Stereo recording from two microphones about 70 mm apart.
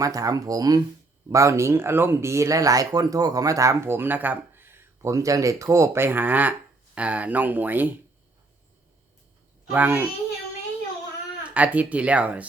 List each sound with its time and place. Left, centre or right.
0.0 s speech: right
1.3 s speech: right
5.0 s speech: right
9.7 s speech: right
11.5 s speech: centre